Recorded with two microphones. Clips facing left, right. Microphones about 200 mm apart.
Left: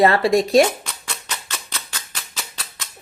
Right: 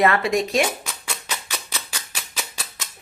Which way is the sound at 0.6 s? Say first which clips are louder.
Left 3 dB; 10° right (ahead or behind).